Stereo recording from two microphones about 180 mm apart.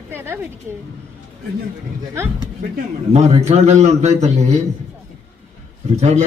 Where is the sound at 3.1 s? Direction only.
35° right (ahead or behind).